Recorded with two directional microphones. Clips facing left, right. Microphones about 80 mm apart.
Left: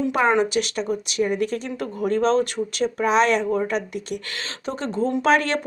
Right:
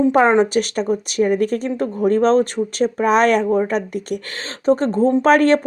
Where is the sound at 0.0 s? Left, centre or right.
Right.